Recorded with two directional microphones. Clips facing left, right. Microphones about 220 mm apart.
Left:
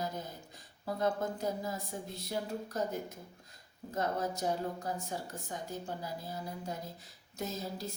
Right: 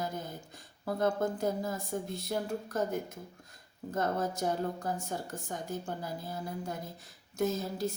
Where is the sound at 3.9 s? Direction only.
50° right (ahead or behind).